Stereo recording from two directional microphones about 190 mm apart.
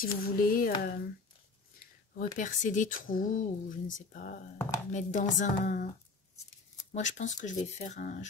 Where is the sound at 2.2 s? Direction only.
40° left (ahead or behind).